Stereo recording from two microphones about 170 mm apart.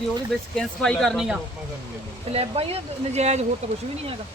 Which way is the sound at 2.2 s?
35° right (ahead or behind).